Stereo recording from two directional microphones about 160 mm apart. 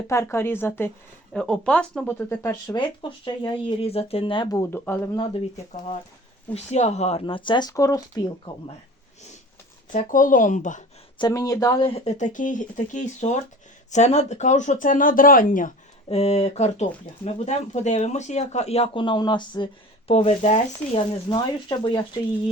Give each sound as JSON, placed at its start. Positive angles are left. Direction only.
{"t": 0.1, "sound": "speech", "side_deg": 15}
{"t": 2.7, "sound": "speech", "side_deg": 30}
{"t": 4.5, "sound": "speech", "side_deg": 15}
{"t": 5.1, "sound": "speech", "side_deg": 35}
{"t": 6.5, "sound": "speech", "side_deg": 45}
{"t": 9.9, "sound": "speech", "side_deg": 55}
{"t": 11.2, "sound": "speech", "side_deg": 20}
{"t": 11.9, "sound": "speech", "side_deg": 40}
{"t": 16.0, "sound": "speech", "side_deg": 40}
{"t": 20.1, "sound": "speech", "side_deg": 40}
{"t": 21.2, "sound": "speech", "side_deg": 30}